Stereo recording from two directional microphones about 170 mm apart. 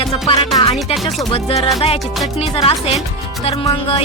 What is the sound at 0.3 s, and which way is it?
Music, 35° left (ahead or behind).